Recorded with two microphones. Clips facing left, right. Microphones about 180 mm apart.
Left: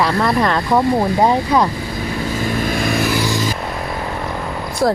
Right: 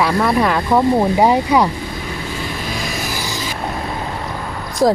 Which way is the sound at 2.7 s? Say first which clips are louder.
Left 7 dB; 55° left (ahead or behind).